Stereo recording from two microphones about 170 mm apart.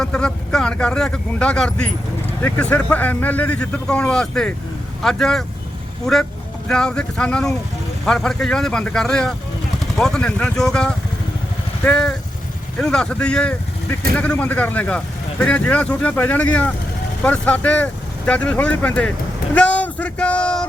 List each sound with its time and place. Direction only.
0.0 s speech: 5° left (ahead or behind)
6.7 s speech: 5° left (ahead or behind)